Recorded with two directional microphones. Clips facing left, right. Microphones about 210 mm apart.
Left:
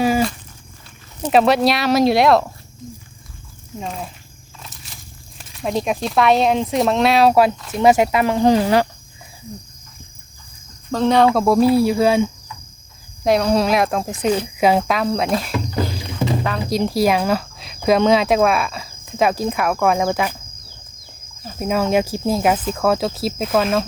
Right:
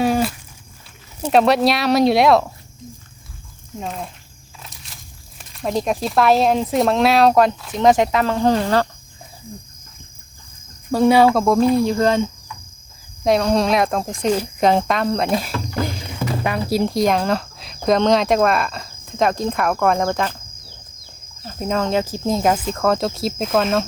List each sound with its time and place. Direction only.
0.0 s cat: centre (ahead or behind)
1.3 s speech: centre (ahead or behind)
3.8 s speech: centre (ahead or behind)
4.6 s walk: centre (ahead or behind)
5.4 s speech: centre (ahead or behind)
10.9 s cricket: 10° right (ahead or behind); by 12.3 s 10° left (ahead or behind)
13.2 s speech: centre (ahead or behind)
15.8 s music: 15° left (ahead or behind)
16.4 s speech: 10° right (ahead or behind); by 20.3 s 5° left (ahead or behind)
21.4 s speech: 10° left (ahead or behind)